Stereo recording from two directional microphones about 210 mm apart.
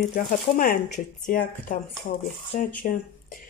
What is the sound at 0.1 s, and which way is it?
Speech, 40° left (ahead or behind).